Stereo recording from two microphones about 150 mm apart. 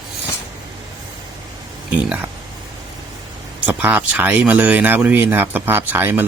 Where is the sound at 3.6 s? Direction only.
10° right (ahead or behind).